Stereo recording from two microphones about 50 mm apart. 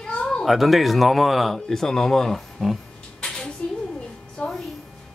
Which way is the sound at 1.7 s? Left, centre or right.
Centre.